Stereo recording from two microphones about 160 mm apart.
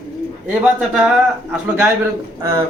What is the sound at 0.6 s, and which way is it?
A man's voice, 10° right (ahead or behind).